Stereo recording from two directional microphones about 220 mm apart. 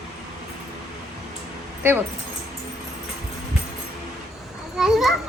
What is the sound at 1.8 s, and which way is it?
Speech, 10° right (ahead or behind).